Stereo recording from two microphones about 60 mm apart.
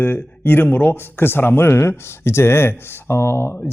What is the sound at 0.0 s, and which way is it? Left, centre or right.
A man's voice, left.